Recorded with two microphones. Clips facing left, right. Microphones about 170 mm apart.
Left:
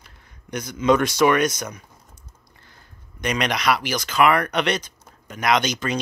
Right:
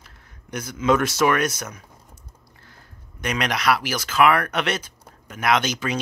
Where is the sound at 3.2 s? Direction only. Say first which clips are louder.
Left 1 dB; 5° right (ahead or behind).